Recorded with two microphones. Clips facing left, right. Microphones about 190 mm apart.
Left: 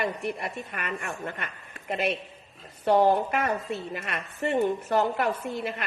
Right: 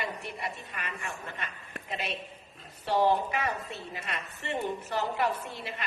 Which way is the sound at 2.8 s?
50° left (ahead or behind).